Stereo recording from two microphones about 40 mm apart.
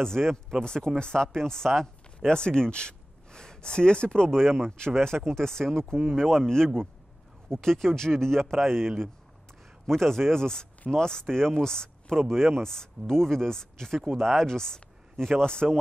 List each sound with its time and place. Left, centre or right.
0.1 s speech: centre
2.1 s speech: left
12.3 s speech: centre